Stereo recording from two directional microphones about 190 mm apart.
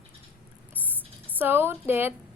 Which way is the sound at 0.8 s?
10° right (ahead or behind).